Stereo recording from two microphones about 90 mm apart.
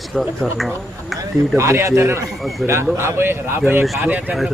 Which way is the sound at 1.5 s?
30° right (ahead or behind).